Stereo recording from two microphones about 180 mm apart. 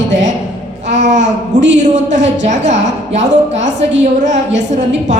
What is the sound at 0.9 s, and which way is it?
A woman's voice, 40° right (ahead or behind).